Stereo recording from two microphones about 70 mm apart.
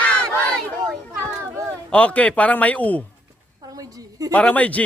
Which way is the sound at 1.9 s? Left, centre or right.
Centre.